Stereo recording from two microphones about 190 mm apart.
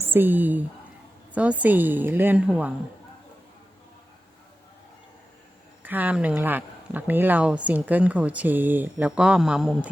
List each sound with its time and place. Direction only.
0.1 s speech: 10° right (ahead or behind)
5.8 s speech: 10° right (ahead or behind)